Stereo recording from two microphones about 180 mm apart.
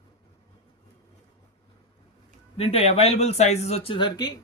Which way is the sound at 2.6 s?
35° left (ahead or behind).